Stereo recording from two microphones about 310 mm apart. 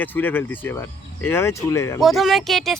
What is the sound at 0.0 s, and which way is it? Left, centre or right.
Speech, centre.